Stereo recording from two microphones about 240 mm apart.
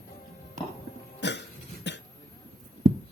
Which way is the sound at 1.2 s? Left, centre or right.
Left.